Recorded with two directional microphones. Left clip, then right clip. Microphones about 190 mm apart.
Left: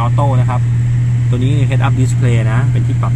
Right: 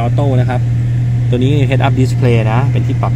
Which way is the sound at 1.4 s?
Centre (ahead or behind).